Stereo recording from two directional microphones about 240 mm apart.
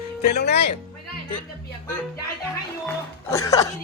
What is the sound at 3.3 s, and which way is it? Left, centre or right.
Speech, centre.